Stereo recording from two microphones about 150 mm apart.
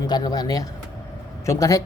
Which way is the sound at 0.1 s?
25° left (ahead or behind).